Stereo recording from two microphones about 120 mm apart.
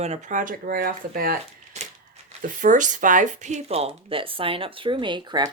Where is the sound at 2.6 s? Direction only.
90° right.